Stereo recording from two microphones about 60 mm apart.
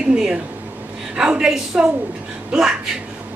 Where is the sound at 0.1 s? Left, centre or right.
Centre.